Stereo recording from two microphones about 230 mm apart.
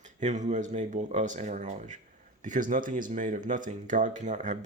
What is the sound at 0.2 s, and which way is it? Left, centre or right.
Speech, right.